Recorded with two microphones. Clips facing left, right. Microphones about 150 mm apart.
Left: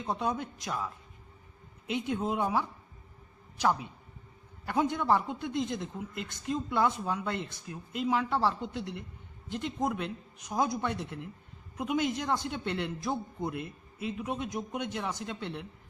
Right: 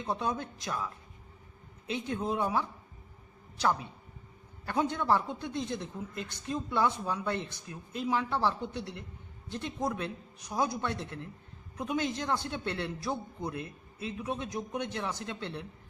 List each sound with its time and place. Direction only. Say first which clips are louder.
0.0 s a man's voice: left 1 dB; 20° left (ahead or behind)
4.6 s a man's voice: left 1 dB; 15° left (ahead or behind)